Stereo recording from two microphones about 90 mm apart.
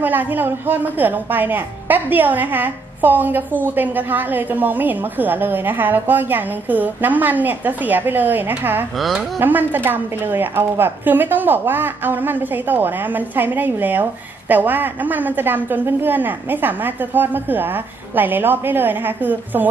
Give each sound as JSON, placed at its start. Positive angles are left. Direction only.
{"t": 0.0, "sound": "a woman's voice", "side_deg": -20}
{"t": 8.9, "sound": "speech", "side_deg": 0}
{"t": 9.4, "sound": "a woman's voice", "side_deg": -20}